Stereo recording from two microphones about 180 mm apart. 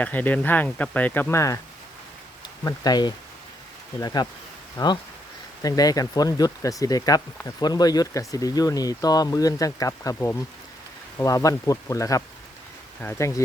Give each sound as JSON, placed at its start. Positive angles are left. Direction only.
{"t": 0.0, "sound": "speech", "side_deg": 10}